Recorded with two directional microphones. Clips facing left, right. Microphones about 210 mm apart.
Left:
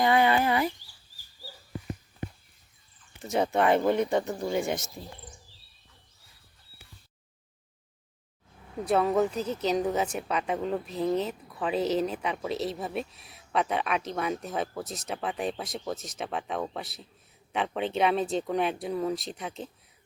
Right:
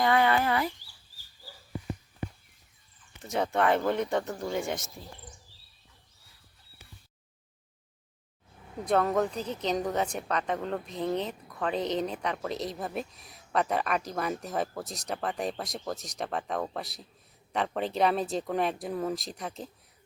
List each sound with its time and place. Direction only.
0.0 s a sound: 15° left (ahead or behind)
3.5 s speech: 15° left (ahead or behind)
8.9 s a woman's voice: 5° left (ahead or behind)